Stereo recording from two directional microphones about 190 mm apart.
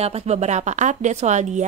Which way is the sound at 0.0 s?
35° right (ahead or behind).